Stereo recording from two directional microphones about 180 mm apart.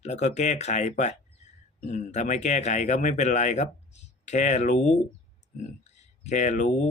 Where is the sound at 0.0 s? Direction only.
40° left (ahead or behind).